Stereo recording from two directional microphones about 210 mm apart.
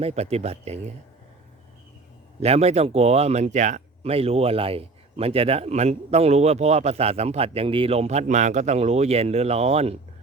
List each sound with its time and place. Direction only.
0.0 s speech: 30° right (ahead or behind)
2.4 s speech: 30° right (ahead or behind)